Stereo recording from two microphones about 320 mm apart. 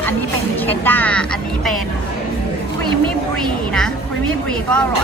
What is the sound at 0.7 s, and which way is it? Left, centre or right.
A woman's voice, centre.